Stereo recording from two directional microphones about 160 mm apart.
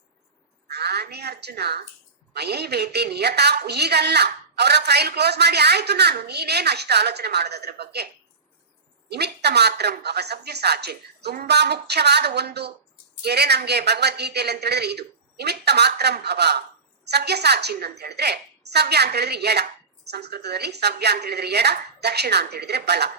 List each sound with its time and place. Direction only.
0.7 s a woman's voice: 90° right
9.0 s a woman's voice: 90° right